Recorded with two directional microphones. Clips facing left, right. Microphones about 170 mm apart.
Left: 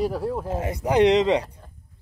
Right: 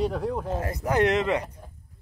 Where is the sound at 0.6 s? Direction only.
20° left (ahead or behind).